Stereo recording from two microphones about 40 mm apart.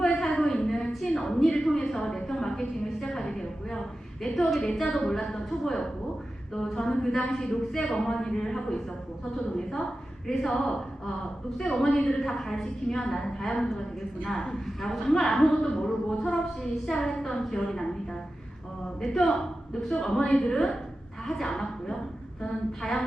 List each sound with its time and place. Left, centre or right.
0.0 s a sound: centre
6.5 s speech: centre
19.0 s speech: centre